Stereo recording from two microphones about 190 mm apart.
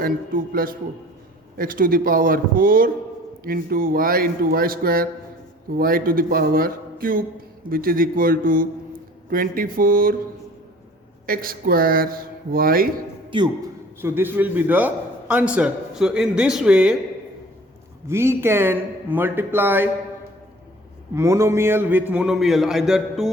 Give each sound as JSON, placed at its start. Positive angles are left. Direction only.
{"t": 0.0, "sound": "speech", "side_deg": -50}
{"t": 11.3, "sound": "speech", "side_deg": -50}
{"t": 13.3, "sound": "a man's voice", "side_deg": -25}
{"t": 14.0, "sound": "a man's voice", "side_deg": -10}
{"t": 18.1, "sound": "speech", "side_deg": -15}
{"t": 21.2, "sound": "a man's voice", "side_deg": -15}